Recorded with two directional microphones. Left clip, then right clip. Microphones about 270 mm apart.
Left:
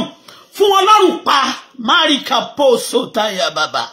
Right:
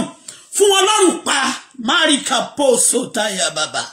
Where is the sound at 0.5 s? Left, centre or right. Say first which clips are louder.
Left 3 dB; centre.